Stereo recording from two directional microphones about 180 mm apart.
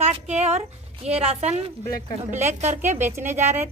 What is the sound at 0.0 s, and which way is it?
A woman's voice, 40° right (ahead or behind).